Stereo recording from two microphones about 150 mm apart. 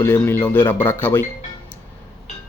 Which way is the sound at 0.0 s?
15° left (ahead or behind).